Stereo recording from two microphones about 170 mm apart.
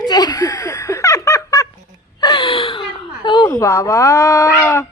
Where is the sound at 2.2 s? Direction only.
25° left (ahead or behind).